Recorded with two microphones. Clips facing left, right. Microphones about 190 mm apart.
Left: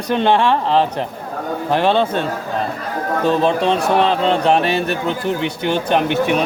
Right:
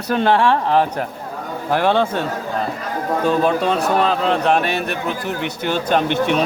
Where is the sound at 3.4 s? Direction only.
25° left (ahead or behind).